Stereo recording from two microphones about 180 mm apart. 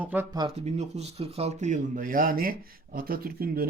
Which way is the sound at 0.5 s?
35° right (ahead or behind).